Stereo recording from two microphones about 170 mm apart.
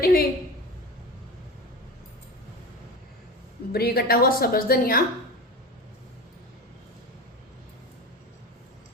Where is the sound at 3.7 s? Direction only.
65° left (ahead or behind).